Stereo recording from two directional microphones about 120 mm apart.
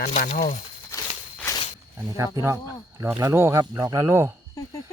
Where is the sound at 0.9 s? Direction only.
20° left (ahead or behind).